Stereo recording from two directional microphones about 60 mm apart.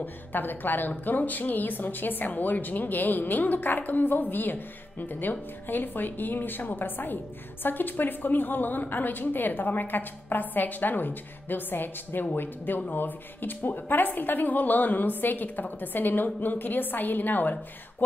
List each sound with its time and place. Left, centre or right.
0.0 s a woman's voice: left